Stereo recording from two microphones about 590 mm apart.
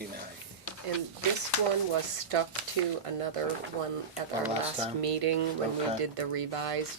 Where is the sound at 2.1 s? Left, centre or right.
Right.